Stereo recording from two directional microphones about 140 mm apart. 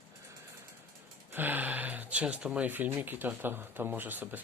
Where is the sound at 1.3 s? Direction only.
15° right (ahead or behind).